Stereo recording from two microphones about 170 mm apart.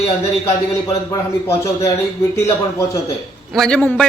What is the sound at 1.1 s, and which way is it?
A man's voice, 20° left (ahead or behind).